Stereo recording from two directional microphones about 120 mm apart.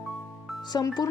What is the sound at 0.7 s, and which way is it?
Speech, 35° left (ahead or behind).